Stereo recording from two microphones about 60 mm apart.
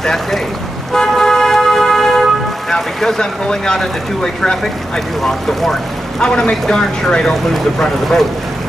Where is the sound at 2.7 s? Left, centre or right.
Centre.